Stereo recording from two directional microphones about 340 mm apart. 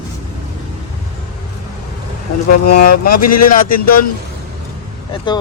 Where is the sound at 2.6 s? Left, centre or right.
Left.